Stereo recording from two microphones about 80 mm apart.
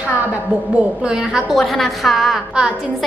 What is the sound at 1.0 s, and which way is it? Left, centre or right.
A woman's voice, centre.